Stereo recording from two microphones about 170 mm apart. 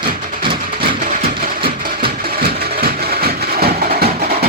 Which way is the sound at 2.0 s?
65° right (ahead or behind).